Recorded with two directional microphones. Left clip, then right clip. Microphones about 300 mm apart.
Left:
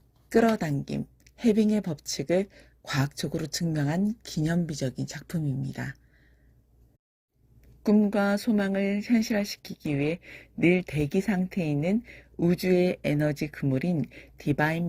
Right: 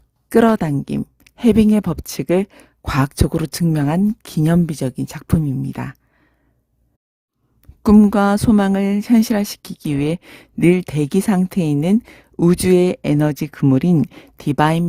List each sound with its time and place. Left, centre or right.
0.3 s speech: right
7.8 s speech: right